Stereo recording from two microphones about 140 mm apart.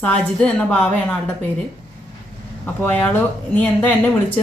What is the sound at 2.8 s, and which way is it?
Speech, 10° left (ahead or behind).